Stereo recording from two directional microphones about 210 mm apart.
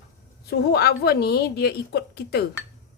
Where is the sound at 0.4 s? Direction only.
50° left (ahead or behind).